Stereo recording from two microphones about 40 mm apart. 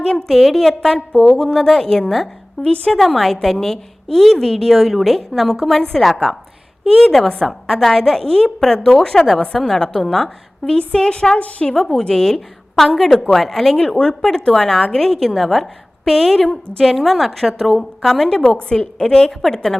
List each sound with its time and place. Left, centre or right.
0.0 s a woman's voice: centre
1.1 s a woman's voice: centre
1.4 s a woman's voice: centre
2.6 s a woman's voice: left
2.9 s a woman's voice: centre